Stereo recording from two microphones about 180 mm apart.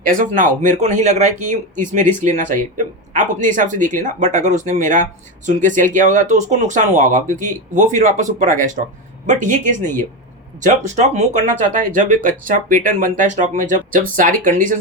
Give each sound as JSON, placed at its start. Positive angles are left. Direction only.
{"t": 0.0, "sound": "speech", "side_deg": -50}